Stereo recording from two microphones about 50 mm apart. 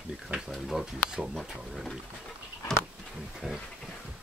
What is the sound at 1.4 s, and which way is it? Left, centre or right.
Speech, centre.